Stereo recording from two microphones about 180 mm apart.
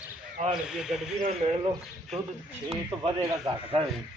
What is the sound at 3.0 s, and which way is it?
Speech, 30° right (ahead or behind).